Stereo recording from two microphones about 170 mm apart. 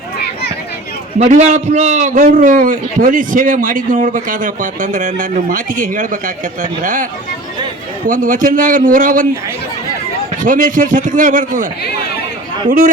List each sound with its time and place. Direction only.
1.2 s a man's voice: 45° right (ahead or behind)
10.4 s a man's voice: 50° right (ahead or behind)